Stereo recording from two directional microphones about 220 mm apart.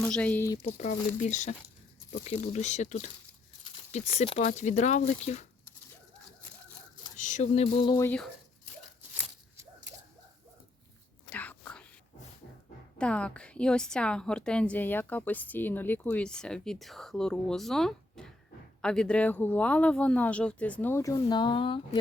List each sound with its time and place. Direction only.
0.0 s speech: 5° left (ahead or behind)
0.6 s speech: 30° left (ahead or behind)
7.2 s mantra: 35° left (ahead or behind)
7.9 s speech: 10° left (ahead or behind)
11.3 s whispering: 5° left (ahead or behind)
13.0 s a woman's voice: 5° left (ahead or behind); by 21.8 s 25° left (ahead or behind)